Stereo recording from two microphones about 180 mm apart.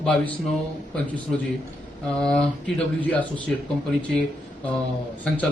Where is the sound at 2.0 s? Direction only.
5° left (ahead or behind).